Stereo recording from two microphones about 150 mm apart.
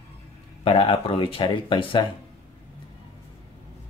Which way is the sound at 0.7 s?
40° left (ahead or behind).